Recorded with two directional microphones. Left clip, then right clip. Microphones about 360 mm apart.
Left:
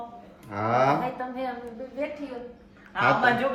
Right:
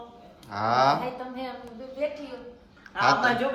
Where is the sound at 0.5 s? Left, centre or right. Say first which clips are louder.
Right 1 dB; centre.